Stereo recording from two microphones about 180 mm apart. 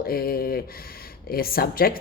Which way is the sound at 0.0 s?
55° left (ahead or behind).